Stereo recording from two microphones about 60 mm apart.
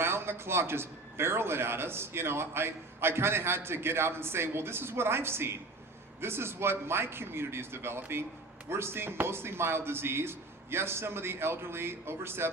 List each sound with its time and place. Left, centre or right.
0.0 s a man's voice: right